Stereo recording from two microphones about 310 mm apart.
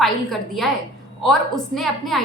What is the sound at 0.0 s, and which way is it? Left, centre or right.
A woman's voice, centre.